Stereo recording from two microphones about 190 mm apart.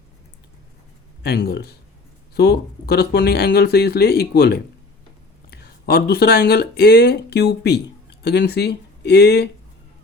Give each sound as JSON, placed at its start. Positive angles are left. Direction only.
{"t": 1.2, "sound": "speech", "side_deg": 55}